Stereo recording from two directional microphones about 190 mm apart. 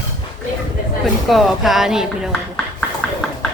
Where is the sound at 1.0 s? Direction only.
Centre (ahead or behind).